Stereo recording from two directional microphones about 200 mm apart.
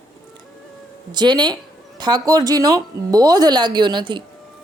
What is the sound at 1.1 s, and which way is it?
Speech, 20° right (ahead or behind).